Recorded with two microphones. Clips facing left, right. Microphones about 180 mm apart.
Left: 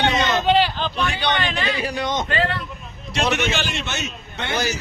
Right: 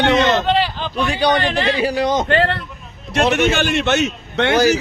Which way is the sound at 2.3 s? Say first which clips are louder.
Right 6 dB; 65° right (ahead or behind).